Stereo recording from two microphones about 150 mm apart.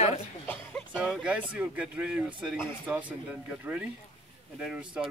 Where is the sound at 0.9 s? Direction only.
5° right (ahead or behind).